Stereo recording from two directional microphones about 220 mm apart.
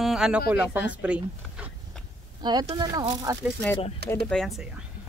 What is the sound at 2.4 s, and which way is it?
Speech, 20° right (ahead or behind).